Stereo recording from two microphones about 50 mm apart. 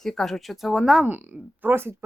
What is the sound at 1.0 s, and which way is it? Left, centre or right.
Speech, right.